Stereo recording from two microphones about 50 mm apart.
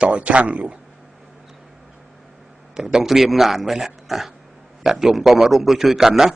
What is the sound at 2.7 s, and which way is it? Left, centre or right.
A man's voice, centre.